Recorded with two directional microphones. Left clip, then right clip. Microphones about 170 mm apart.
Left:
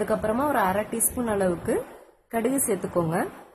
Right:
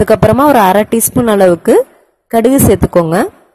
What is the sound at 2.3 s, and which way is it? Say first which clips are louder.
Speech: right 17 dB; 50° right (ahead or behind).